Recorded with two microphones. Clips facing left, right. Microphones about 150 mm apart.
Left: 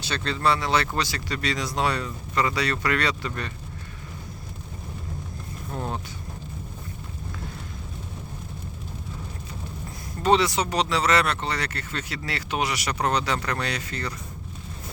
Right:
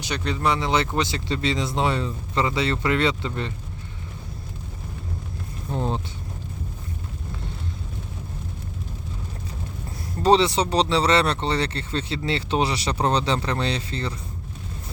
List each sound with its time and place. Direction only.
0.0 s speech: 15° right (ahead or behind)
5.7 s speech: 25° right (ahead or behind)
10.2 s speech: 30° right (ahead or behind)